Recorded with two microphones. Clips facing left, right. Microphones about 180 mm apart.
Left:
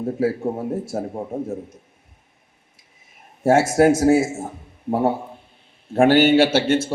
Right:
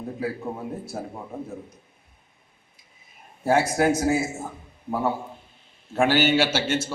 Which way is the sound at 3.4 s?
85° left.